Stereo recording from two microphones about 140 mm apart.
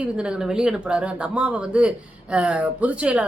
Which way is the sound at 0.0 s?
5° right (ahead or behind).